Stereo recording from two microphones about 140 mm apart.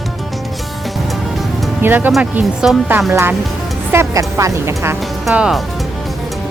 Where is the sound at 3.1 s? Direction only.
20° right (ahead or behind).